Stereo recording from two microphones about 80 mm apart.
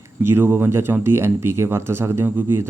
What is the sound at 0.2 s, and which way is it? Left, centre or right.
Speech, right.